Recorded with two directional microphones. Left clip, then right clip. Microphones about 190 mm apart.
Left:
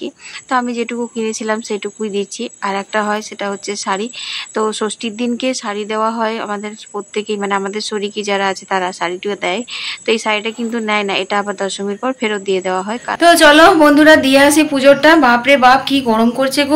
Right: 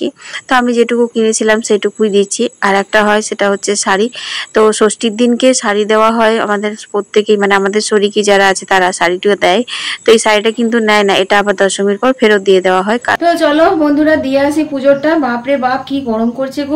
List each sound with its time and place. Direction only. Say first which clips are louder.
0.0 s speech: right 8 dB; 30° right (ahead or behind)
13.2 s a woman's voice: left 6 dB; 10° right (ahead or behind)